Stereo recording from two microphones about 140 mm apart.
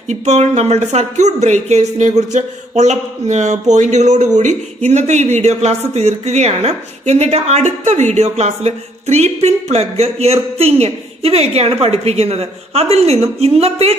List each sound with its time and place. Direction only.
0.1 s speech: 55° right (ahead or behind)